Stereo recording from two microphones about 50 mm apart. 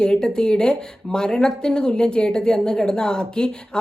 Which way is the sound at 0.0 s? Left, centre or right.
Centre.